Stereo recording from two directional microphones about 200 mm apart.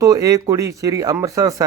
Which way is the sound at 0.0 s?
15° right (ahead or behind).